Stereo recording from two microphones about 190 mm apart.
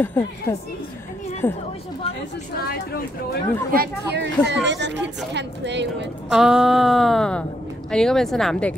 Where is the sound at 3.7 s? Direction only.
55° right (ahead or behind).